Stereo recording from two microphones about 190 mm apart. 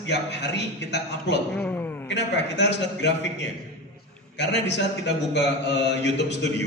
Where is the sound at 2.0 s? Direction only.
65° left (ahead or behind).